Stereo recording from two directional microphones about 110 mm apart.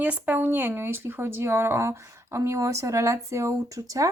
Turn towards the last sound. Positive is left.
turn(degrees=-30)  # may be behind; listen again after turning